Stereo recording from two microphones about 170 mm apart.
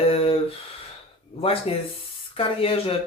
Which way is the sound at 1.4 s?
35° left (ahead or behind).